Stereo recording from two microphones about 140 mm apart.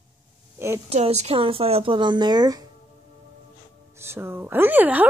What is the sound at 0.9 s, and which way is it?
Speech, 50° right (ahead or behind).